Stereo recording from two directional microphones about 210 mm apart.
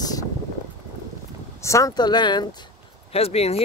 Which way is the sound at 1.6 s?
15° left (ahead or behind).